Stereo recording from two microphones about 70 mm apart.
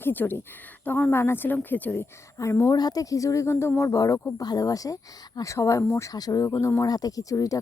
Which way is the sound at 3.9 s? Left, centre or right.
Left.